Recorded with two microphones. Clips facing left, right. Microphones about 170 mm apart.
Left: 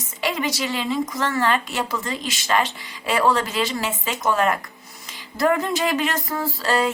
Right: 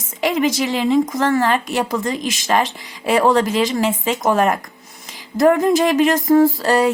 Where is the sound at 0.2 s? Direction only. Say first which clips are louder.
Right 7 dB; 50° right (ahead or behind).